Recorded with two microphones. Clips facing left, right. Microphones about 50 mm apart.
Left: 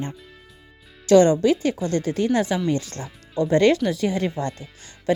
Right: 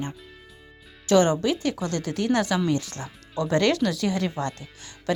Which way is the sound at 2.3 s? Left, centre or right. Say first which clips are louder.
Right 1 dB; right.